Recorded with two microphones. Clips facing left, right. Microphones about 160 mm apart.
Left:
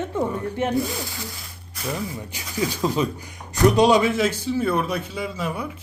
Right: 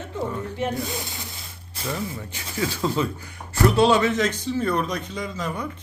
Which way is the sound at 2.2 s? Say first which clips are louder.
Left 2 dB; 15° left (ahead or behind).